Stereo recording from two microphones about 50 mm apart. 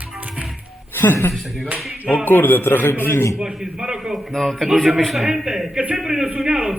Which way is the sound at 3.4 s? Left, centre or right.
Centre.